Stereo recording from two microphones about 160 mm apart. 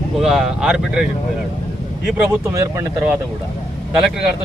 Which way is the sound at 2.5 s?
15° right (ahead or behind).